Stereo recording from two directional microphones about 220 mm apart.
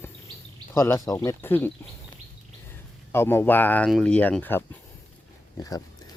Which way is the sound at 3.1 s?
10° left (ahead or behind).